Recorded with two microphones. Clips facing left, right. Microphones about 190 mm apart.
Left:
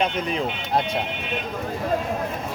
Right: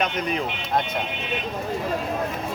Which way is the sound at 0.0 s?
30° left (ahead or behind).